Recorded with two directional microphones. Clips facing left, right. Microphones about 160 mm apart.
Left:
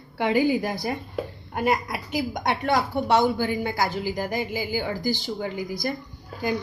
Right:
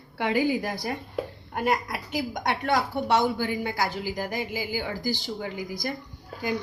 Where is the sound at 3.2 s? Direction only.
30° left (ahead or behind).